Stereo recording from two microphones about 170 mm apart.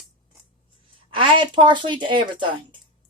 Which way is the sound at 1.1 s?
30° right (ahead or behind).